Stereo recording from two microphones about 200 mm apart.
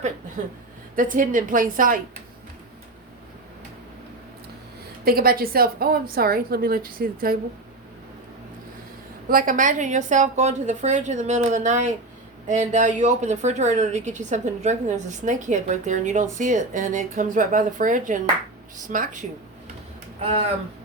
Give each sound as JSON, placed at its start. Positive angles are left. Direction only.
{"t": 0.4, "sound": "a woman's voice", "side_deg": -40}
{"t": 5.0, "sound": "a woman's voice", "side_deg": -50}
{"t": 9.3, "sound": "a woman's voice", "side_deg": -45}